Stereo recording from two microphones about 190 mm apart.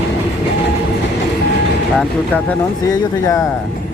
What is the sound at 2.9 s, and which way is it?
Speech, 15° left (ahead or behind).